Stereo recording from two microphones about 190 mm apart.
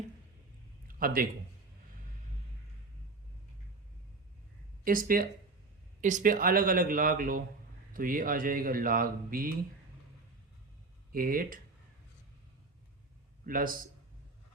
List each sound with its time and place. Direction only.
0.9 s a sound: 50° right (ahead or behind)
4.8 s speech: 45° right (ahead or behind)
11.1 s speech: 50° right (ahead or behind)
13.4 s a man's voice: 45° right (ahead or behind)